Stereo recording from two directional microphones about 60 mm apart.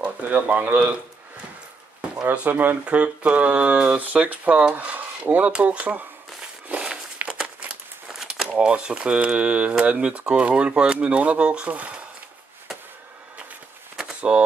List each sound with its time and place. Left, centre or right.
0.0 s speech: right
2.3 s speech: right
2.8 s speech: right
14.3 s speech: right